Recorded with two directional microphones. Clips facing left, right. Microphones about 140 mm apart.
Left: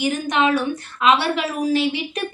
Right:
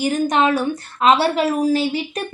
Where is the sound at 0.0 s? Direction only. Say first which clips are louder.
Right 2 dB; 40° right (ahead or behind).